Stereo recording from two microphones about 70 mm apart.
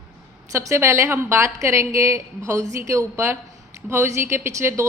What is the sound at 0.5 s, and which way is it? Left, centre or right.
A woman's voice, right.